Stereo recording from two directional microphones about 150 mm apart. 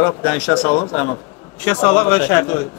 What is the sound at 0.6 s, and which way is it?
Speech, 30° left (ahead or behind).